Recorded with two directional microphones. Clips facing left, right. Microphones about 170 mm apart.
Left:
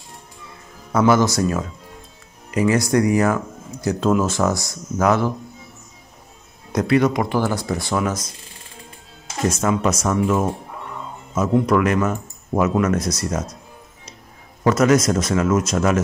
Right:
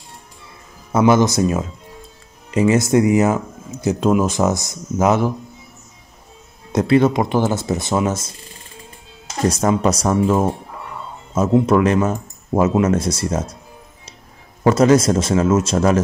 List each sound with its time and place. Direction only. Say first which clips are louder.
0.9 s speech: right 2 dB; 20° right (ahead or behind)
6.7 s speech: right 3 dB; 25° right (ahead or behind)
9.5 s speech: right 3 dB; 35° right (ahead or behind)
14.6 s speech: right 3 dB; 30° right (ahead or behind)